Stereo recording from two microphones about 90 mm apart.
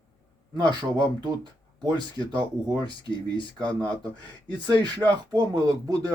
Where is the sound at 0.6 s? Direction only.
50° right (ahead or behind).